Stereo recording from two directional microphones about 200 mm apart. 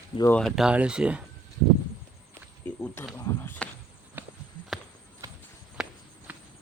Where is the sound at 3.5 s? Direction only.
5° left (ahead or behind).